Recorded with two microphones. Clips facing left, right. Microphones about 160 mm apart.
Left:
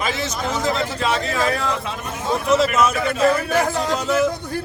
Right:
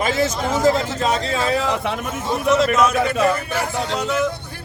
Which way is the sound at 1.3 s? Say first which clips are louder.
Right 1 dB; 25° right (ahead or behind).